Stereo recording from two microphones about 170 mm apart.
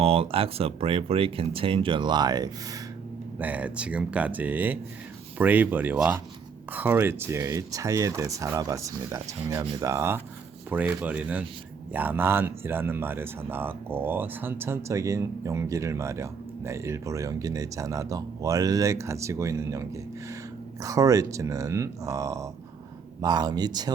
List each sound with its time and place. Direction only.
0.0 s speech: 35° right (ahead or behind)
3.3 s speech: 10° right (ahead or behind)